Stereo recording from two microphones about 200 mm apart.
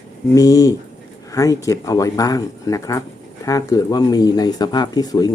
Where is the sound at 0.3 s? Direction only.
15° left (ahead or behind).